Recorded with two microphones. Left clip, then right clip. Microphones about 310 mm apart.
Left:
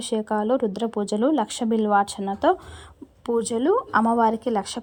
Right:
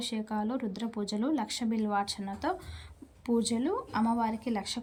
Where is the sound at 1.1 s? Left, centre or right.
Left.